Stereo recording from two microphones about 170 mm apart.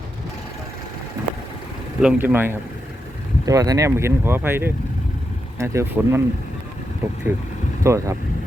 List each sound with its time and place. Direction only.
2.0 s speech: 5° right (ahead or behind)